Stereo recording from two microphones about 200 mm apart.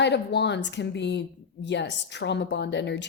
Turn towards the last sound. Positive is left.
turn(degrees=60)  # may be behind; listen again after turning